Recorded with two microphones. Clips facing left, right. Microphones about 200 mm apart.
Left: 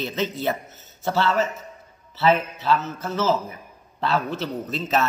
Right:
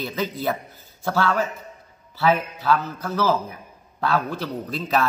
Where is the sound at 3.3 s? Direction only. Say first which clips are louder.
Even; centre (ahead or behind).